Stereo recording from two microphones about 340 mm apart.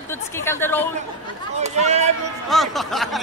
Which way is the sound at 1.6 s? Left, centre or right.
Centre.